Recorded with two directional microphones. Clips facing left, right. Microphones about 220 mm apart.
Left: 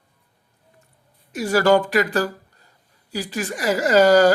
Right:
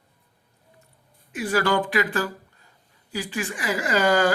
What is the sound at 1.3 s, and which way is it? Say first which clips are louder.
Speech: left 6 dB; 40° left (ahead or behind).